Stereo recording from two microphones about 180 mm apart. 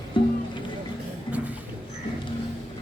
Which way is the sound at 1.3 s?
30° left (ahead or behind).